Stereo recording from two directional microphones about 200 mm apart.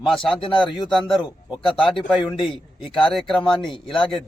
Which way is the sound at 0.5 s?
25° left (ahead or behind).